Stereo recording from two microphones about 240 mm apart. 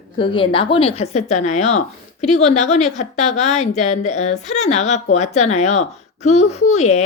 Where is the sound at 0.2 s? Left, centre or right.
Left.